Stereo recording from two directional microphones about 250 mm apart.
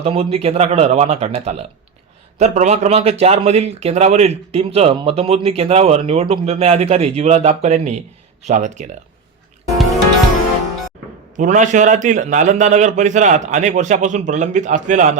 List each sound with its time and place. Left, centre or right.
0.0 s speech: right
11.3 s speech: right